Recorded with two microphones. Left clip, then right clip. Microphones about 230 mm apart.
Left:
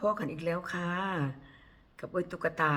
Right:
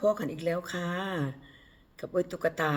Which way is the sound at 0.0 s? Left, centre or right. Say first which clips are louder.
Right 3 dB; centre.